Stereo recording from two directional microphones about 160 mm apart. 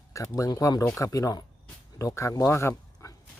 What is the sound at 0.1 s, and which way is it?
Speech, 20° left (ahead or behind).